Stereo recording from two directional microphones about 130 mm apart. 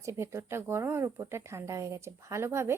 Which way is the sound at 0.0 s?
20° right (ahead or behind).